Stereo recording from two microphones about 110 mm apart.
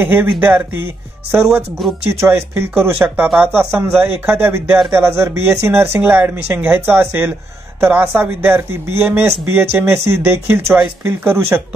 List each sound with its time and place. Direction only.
0.0 s speech: 15° right (ahead or behind)
2.0 s speech: 25° right (ahead or behind)